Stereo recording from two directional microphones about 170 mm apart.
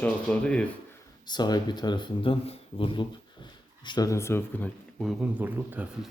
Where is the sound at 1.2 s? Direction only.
25° left (ahead or behind).